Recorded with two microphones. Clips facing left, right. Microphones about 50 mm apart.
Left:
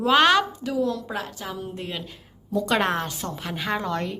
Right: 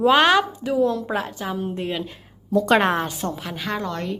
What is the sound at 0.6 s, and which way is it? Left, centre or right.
A woman's voice, right.